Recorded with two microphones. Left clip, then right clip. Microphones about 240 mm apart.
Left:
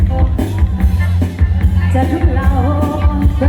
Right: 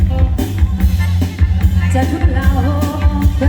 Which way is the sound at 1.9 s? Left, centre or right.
Right.